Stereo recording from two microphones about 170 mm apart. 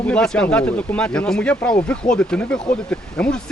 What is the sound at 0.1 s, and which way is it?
Speech, 5° left (ahead or behind).